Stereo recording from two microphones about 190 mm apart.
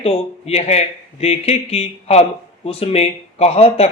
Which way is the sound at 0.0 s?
30° left (ahead or behind).